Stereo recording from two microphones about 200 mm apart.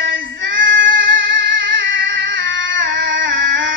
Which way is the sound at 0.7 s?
45° right (ahead or behind).